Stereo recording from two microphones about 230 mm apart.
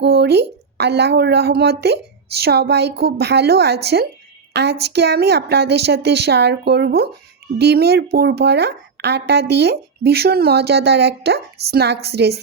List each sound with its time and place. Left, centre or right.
0.0 s a woman's voice: right